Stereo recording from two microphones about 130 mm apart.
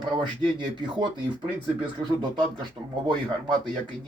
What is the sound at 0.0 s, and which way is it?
Speech, 35° right (ahead or behind).